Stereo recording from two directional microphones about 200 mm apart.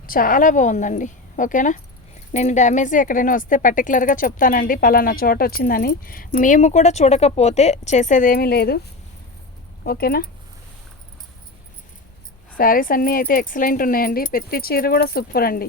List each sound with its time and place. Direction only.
0.0 s a woman's voice: 45° left (ahead or behind)
9.8 s speech: 50° left (ahead or behind)
12.5 s speech: 45° left (ahead or behind)